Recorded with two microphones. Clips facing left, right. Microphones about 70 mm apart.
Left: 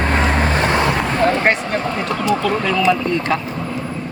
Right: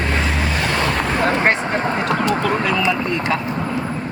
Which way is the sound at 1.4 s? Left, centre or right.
Right.